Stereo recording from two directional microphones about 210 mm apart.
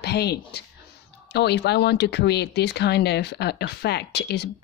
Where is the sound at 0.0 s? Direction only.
50° left (ahead or behind).